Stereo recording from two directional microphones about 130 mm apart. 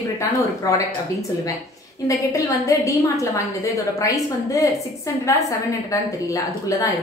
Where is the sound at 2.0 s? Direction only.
25° left (ahead or behind).